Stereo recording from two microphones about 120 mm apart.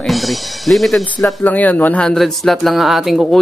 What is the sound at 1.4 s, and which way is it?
Speech, 15° left (ahead or behind).